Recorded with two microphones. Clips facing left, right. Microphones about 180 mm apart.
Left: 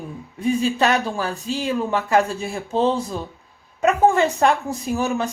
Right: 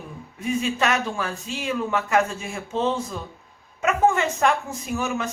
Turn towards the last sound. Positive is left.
turn(degrees=35)  # may be behind; listen again after turning